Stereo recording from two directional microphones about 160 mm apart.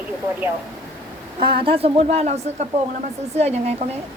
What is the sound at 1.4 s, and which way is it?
Speech, 35° right (ahead or behind).